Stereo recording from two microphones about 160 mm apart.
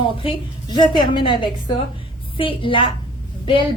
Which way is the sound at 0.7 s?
30° left (ahead or behind).